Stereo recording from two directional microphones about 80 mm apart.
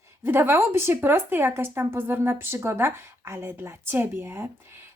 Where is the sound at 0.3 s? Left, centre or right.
Right.